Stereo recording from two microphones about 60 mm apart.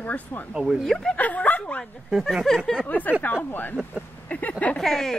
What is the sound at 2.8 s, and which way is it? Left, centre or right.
Speech, left.